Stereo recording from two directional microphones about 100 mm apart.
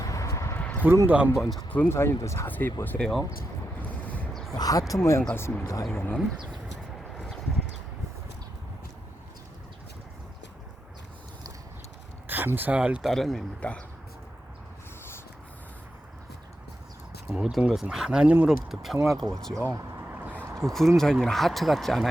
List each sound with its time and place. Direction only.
0.0 s a sound: 35° left (ahead or behind)
0.6 s a sound: 15° left (ahead or behind)
0.9 s speech: 20° right (ahead or behind)
1.4 s speech: centre (ahead or behind)
1.7 s speech: 20° left (ahead or behind)
2.5 s speech: 20° left (ahead or behind)
3.8 s wind noise: 15° left (ahead or behind)
4.5 s speech: 40° left (ahead or behind); by 6.1 s 20° left (ahead or behind)
12.3 s speech: 20° right (ahead or behind); by 13.8 s 10° left (ahead or behind)
17.3 s speech: 5° right (ahead or behind)
20.1 s a sound: 15° right (ahead or behind)
20.6 s speech: 5° left (ahead or behind)